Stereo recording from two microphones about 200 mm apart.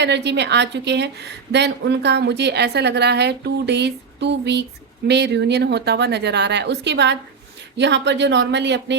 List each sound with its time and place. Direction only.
0.0 s a woman's voice: 60° right (ahead or behind)